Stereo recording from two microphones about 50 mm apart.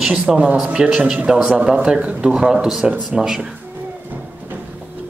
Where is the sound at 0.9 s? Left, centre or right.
Centre.